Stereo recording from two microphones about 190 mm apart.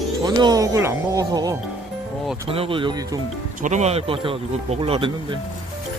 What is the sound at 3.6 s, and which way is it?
Speech, 35° right (ahead or behind).